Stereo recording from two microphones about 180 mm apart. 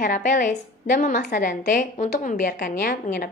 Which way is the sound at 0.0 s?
45° left (ahead or behind).